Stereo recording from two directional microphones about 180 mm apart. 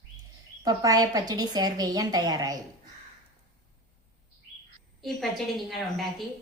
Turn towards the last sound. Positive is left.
turn(degrees=0)  # may be behind; listen again after turning